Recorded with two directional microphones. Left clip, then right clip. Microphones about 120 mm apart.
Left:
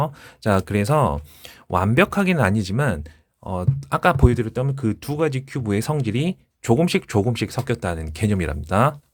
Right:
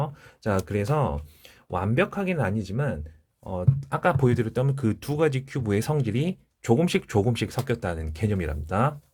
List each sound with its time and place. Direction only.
0.0 s speech: 30° left (ahead or behind); by 3.5 s 45° left (ahead or behind)
3.5 s speech: 25° left (ahead or behind)
4.4 s speech: 10° left (ahead or behind); by 9.0 s 30° left (ahead or behind)